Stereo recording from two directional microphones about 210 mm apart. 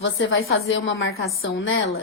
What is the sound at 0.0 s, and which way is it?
A woman's voice, 70° left (ahead or behind).